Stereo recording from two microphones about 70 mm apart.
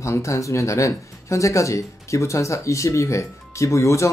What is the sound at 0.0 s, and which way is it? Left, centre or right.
Speech, left.